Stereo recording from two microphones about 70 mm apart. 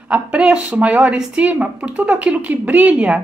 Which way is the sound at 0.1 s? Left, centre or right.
Centre.